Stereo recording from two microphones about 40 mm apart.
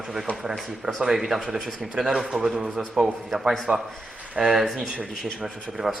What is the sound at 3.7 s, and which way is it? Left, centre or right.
Speech, right.